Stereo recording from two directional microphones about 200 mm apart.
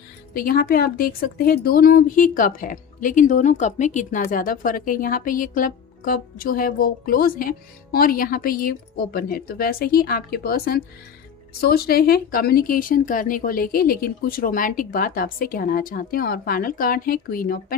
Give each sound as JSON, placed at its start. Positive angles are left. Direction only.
{"t": 0.3, "sound": "speech", "side_deg": 45}